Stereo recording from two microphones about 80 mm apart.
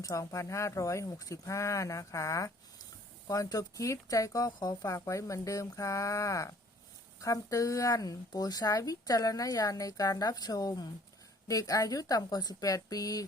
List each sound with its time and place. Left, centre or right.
0.0 s speech: left